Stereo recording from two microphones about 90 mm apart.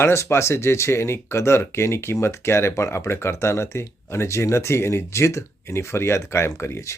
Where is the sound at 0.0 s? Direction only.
30° left (ahead or behind).